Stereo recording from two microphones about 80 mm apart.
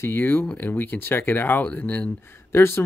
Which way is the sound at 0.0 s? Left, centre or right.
Left.